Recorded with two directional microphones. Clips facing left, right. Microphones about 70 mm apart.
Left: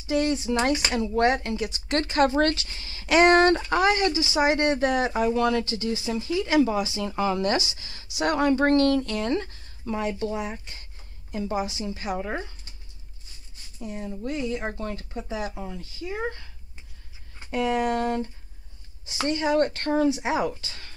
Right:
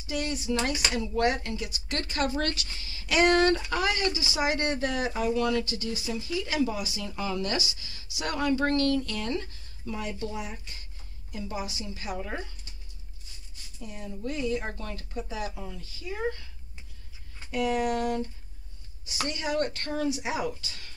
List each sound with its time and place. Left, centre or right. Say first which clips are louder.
0.1 s speech: left 6 dB; left
13.7 s speech: left 6 dB; left
17.5 s speech: left 3 dB; left